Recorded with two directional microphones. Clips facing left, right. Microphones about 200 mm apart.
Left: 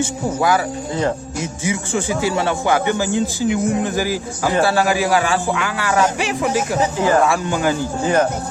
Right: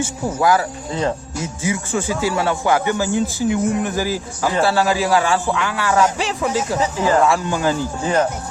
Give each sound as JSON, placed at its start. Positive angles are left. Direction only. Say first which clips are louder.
{"t": 0.0, "sound": "a man's voice", "louder": "even", "side_deg": 20}